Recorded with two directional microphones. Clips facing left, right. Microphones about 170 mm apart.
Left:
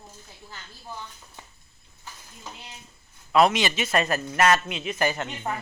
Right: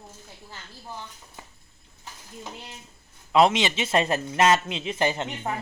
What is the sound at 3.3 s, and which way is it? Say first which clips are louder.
A man's voice: right 1 dB; 20° right (ahead or behind).